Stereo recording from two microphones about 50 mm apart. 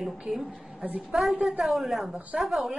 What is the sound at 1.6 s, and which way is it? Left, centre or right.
Speech, centre.